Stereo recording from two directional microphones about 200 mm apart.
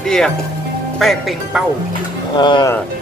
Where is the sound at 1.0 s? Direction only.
Centre (ahead or behind).